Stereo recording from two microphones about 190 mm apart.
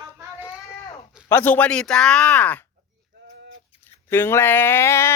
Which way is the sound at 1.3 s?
10° left (ahead or behind).